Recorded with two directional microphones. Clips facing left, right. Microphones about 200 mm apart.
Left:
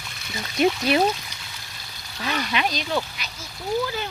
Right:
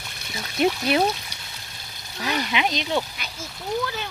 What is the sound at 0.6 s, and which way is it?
Speech, centre (ahead or behind).